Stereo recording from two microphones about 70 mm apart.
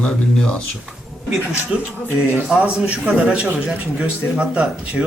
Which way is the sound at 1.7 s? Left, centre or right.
Centre.